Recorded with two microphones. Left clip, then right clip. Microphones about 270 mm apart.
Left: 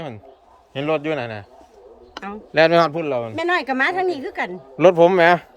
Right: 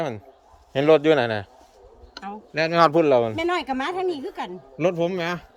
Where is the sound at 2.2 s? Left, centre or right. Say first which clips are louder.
Left 9 dB; centre.